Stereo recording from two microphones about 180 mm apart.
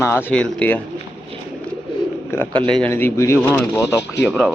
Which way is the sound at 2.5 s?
30° right (ahead or behind).